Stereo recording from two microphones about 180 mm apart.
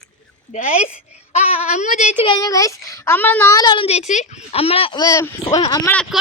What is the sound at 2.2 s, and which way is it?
A woman's voice, 25° left (ahead or behind).